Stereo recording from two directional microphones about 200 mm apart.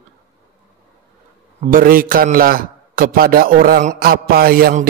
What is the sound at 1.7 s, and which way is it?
A man's voice, 45° right (ahead or behind).